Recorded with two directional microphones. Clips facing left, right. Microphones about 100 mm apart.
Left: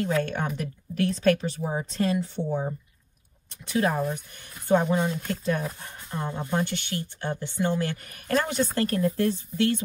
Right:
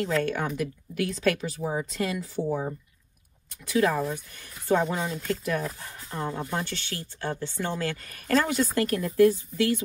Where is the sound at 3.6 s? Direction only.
25° left (ahead or behind).